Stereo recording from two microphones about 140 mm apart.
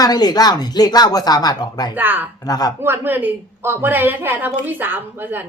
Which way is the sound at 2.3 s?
30° left (ahead or behind).